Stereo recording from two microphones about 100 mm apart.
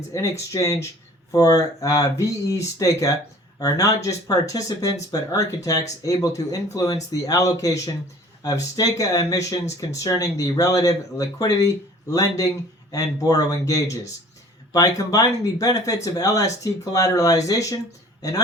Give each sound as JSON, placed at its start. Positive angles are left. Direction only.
{"t": 0.1, "sound": "speech", "side_deg": 35}